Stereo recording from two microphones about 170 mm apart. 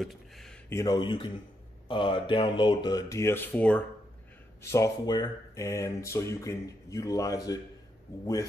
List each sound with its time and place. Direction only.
0.0 s a sound: centre (ahead or behind)
0.7 s speech: 20° left (ahead or behind)
4.6 s speech: 20° left (ahead or behind)